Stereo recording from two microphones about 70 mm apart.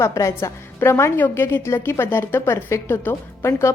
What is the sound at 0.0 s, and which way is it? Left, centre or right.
A woman's voice, left.